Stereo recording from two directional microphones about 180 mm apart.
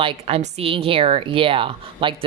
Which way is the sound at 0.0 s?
30° right (ahead or behind).